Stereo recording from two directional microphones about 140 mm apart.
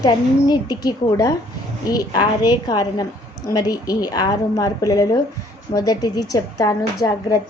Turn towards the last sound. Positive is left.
turn(degrees=25)  # may be behind; listen again after turning